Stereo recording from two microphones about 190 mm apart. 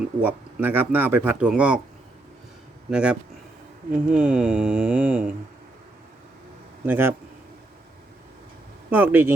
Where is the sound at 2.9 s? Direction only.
5° right (ahead or behind).